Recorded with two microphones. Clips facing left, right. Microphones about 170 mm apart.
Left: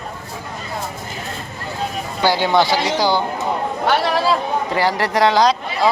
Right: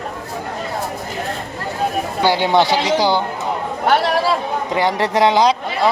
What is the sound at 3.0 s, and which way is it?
Speech, 10° left (ahead or behind).